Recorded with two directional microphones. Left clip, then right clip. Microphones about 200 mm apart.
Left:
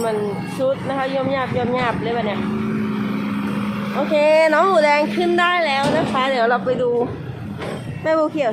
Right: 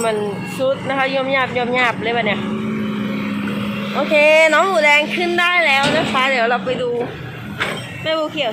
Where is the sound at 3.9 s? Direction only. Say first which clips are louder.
Right 3 dB; 10° left (ahead or behind).